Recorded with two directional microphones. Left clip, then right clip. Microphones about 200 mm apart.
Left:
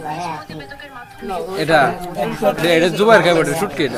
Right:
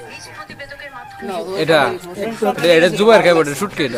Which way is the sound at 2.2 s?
25° right (ahead or behind).